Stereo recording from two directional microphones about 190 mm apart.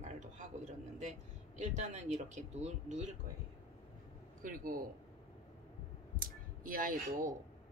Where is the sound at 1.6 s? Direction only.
40° right (ahead or behind).